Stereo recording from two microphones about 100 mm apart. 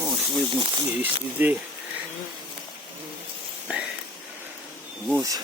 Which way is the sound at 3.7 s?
10° right (ahead or behind).